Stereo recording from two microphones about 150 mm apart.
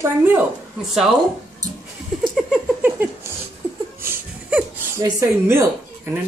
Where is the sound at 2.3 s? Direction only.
5° right (ahead or behind).